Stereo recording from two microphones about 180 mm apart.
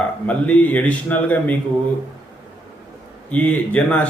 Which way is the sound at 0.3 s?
10° left (ahead or behind).